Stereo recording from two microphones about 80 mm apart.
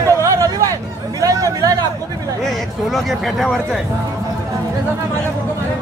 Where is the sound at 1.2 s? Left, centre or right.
Right.